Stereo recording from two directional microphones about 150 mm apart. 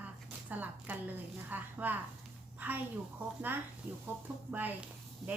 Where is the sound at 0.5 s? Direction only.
10° right (ahead or behind).